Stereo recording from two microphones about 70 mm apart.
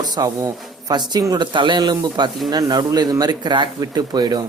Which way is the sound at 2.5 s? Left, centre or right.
Right.